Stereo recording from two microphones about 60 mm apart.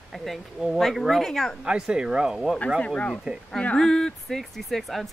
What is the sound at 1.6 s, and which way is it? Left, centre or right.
Speech, centre.